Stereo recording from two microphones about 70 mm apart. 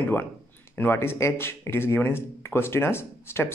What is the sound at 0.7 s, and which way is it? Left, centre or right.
Speech, left.